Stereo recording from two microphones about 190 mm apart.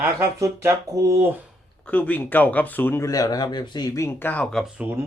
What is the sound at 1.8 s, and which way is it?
Speech, 10° left (ahead or behind).